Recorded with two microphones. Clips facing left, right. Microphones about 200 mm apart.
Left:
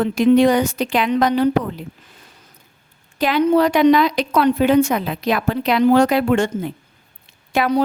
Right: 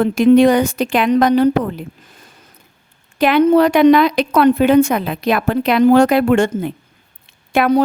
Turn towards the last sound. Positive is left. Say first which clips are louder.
# right 4 dB
turn(degrees=-55)  # may be behind; listen again after turning